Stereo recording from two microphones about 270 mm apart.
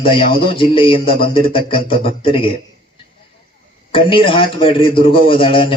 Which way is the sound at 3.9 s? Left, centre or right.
Centre.